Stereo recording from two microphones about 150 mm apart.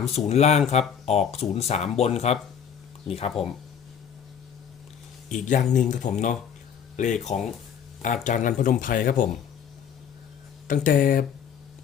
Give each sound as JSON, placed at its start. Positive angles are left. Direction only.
{"t": 0.3, "sound": "speech", "side_deg": 45}
{"t": 5.3, "sound": "speech", "side_deg": 55}
{"t": 10.7, "sound": "speech", "side_deg": 65}